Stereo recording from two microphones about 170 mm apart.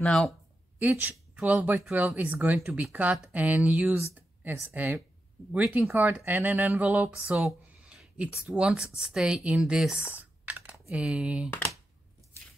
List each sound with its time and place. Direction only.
0.0 s speech: 5° left (ahead or behind)
0.7 s speech: 10° right (ahead or behind)
10.4 s typing: 10° right (ahead or behind)